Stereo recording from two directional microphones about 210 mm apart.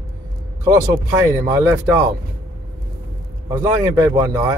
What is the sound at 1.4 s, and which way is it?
Speech, 15° right (ahead or behind).